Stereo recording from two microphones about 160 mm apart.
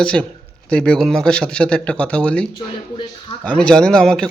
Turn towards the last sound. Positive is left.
turn(degrees=5)  # may be behind; listen again after turning